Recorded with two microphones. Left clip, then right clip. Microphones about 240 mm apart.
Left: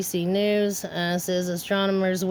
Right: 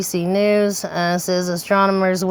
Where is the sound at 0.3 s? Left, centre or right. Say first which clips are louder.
Right 7 dB; centre.